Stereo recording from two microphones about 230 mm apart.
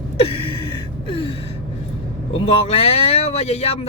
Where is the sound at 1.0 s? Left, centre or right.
Left.